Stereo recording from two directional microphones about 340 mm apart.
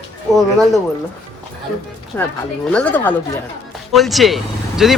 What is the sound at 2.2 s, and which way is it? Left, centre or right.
A man's voice, centre.